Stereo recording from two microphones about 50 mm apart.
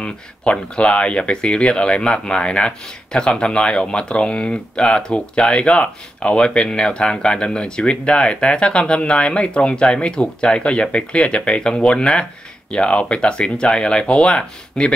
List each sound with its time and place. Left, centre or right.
0.0 s speech: left